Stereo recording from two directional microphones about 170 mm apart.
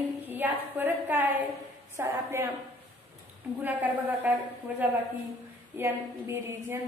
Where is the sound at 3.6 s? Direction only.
10° right (ahead or behind).